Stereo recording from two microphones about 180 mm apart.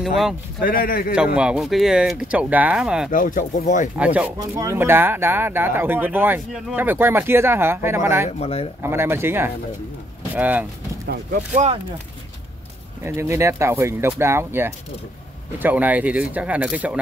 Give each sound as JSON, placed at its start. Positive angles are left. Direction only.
{"t": 0.0, "sound": "speech", "side_deg": 0}
{"t": 0.6, "sound": "speech", "side_deg": 55}
{"t": 1.1, "sound": "speech", "side_deg": -5}
{"t": 3.1, "sound": "speech", "side_deg": 45}
{"t": 3.9, "sound": "speech", "side_deg": -5}
{"t": 8.3, "sound": "speech", "side_deg": 35}
{"t": 8.8, "sound": "speech", "side_deg": -15}
{"t": 11.3, "sound": "speech", "side_deg": -40}
{"t": 13.0, "sound": "speech", "side_deg": -15}